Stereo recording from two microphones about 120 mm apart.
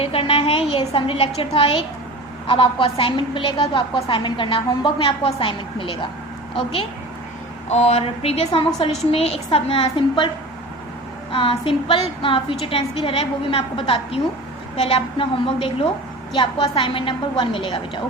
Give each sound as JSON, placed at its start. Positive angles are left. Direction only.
{"t": 0.0, "sound": "a woman's voice", "side_deg": 50}
{"t": 7.7, "sound": "a woman's voice", "side_deg": 65}
{"t": 11.3, "sound": "a woman's voice", "side_deg": 50}